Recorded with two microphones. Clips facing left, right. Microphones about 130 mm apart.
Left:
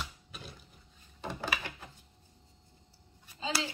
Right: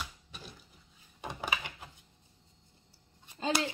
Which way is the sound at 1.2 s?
15° right (ahead or behind).